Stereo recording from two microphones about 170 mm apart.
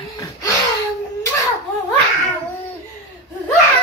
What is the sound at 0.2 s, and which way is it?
Gasp, 20° left (ahead or behind).